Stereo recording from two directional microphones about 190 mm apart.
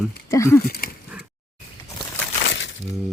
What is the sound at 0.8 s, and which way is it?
Speech, 50° left (ahead or behind).